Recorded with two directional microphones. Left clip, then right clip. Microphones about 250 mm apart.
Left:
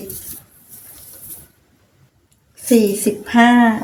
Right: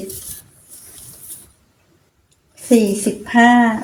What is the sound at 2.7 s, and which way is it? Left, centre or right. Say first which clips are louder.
Speech: even; centre.